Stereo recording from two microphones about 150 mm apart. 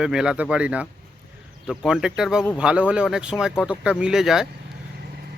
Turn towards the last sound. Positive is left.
turn(degrees=-5)  # may be behind; listen again after turning